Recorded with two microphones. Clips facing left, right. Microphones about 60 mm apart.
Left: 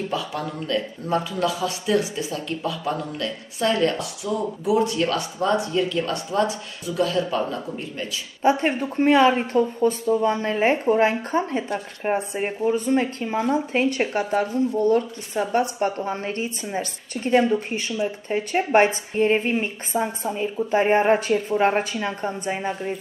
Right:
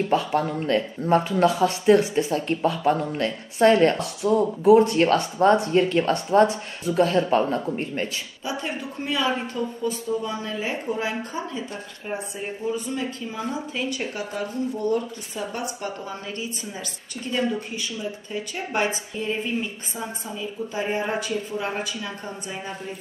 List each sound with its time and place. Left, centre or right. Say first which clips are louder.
0.1 s speech: right 5 dB; right
8.4 s speech: left 11 dB; left
14.9 s a woman's voice: left 4 dB; left